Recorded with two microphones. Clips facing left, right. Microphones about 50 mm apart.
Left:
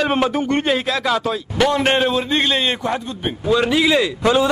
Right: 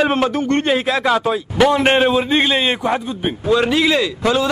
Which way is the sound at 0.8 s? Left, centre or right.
Centre.